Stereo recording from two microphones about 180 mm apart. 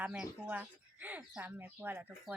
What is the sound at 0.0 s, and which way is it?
Speech, 10° right (ahead or behind).